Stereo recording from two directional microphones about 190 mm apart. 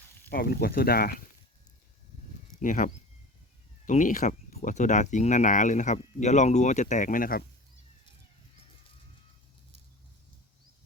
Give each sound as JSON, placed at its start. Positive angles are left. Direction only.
{"t": 0.3, "sound": "speech", "side_deg": 50}
{"t": 2.6, "sound": "speech", "side_deg": 40}